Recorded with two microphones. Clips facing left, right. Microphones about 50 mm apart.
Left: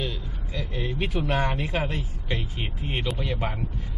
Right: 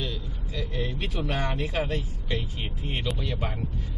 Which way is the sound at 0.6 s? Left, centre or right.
Centre.